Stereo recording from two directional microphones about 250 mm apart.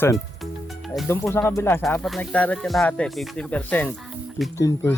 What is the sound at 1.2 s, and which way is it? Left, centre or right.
Speech, centre.